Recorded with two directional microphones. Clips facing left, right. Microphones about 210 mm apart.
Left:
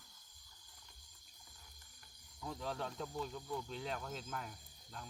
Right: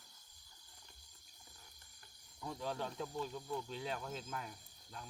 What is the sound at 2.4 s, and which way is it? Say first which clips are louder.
Speech: right 1 dB; centre (ahead or behind).